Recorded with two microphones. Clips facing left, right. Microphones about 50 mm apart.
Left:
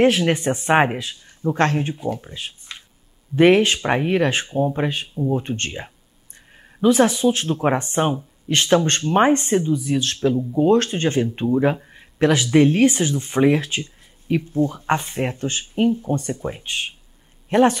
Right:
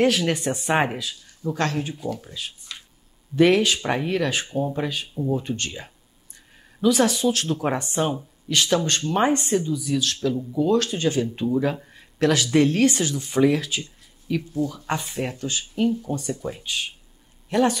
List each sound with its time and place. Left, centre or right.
0.0 s speech: left
11.4 s speech: left
13.2 s speech: left